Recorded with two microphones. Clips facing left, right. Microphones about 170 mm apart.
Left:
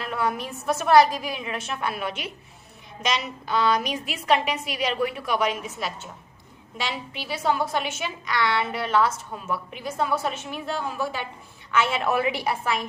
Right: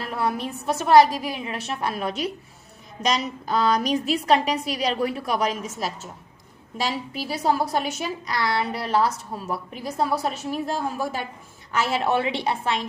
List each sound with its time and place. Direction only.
0.0 s a woman's voice: 35° right (ahead or behind)